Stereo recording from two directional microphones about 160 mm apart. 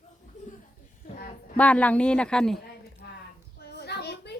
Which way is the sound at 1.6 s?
10° left (ahead or behind).